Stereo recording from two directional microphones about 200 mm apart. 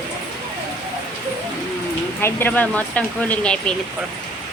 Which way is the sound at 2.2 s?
10° left (ahead or behind).